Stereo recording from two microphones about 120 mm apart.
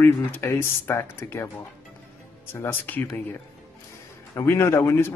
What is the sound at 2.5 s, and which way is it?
Speech, 20° left (ahead or behind).